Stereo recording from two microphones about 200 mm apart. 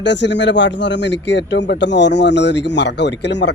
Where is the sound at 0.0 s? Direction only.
60° left (ahead or behind).